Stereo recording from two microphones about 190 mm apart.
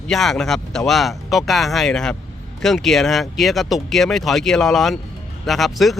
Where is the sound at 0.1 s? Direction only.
Centre (ahead or behind).